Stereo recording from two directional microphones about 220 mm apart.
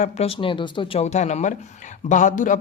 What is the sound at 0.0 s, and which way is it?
Speech, 25° left (ahead or behind).